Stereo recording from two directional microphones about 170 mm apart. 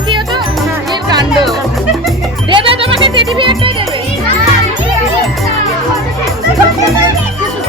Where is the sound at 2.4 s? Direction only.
30° right (ahead or behind).